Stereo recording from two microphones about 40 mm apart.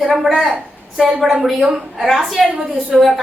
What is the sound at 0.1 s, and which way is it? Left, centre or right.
A woman's voice, centre.